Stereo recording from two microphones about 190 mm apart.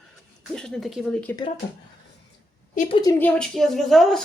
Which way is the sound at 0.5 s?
5° left (ahead or behind).